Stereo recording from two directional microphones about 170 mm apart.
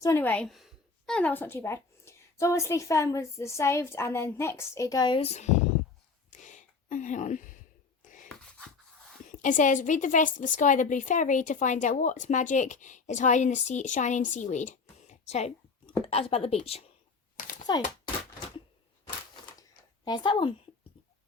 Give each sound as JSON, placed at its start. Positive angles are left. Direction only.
{"t": 0.0, "sound": "a woman's voice", "side_deg": 15}
{"t": 6.3, "sound": "a sound", "side_deg": 45}
{"t": 8.4, "sound": "a sound", "side_deg": 5}
{"t": 9.3, "sound": "a woman's voice", "side_deg": 50}
{"t": 17.7, "sound": "speech", "side_deg": 25}
{"t": 20.1, "sound": "speech", "side_deg": 25}